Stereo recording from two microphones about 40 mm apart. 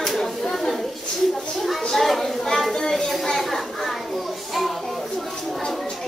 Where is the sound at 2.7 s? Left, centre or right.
Centre.